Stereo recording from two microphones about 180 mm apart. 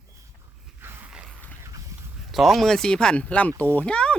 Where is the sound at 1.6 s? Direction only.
15° right (ahead or behind).